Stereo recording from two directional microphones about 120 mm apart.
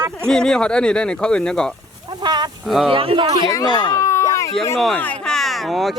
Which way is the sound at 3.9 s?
25° left (ahead or behind).